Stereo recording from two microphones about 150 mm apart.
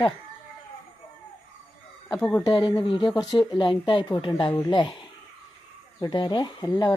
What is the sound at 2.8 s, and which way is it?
Speech, 35° left (ahead or behind).